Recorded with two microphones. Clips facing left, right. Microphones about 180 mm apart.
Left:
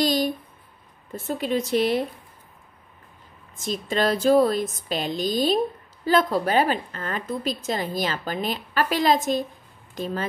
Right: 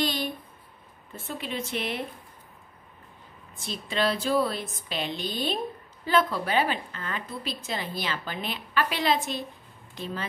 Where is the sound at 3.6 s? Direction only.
45° left (ahead or behind).